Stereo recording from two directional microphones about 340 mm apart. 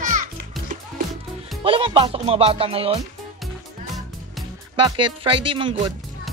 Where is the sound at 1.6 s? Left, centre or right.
Centre.